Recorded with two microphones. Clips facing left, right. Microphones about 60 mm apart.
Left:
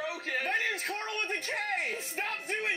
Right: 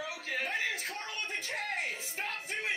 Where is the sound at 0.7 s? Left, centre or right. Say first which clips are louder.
Left 4 dB; left.